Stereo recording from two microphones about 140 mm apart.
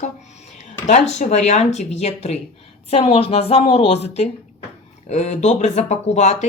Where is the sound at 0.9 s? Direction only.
55° left (ahead or behind).